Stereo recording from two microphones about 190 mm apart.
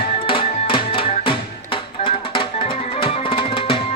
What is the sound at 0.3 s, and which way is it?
Music, 25° left (ahead or behind).